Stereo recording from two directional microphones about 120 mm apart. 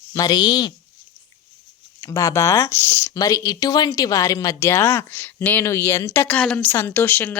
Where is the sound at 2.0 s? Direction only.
25° left (ahead or behind).